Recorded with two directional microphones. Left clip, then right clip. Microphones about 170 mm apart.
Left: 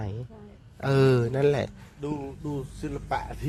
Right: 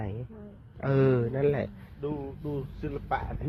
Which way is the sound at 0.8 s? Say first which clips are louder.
Left 3 dB; 35° left (ahead or behind).